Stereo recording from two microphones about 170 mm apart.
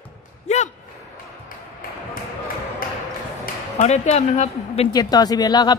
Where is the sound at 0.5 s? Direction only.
40° left (ahead or behind).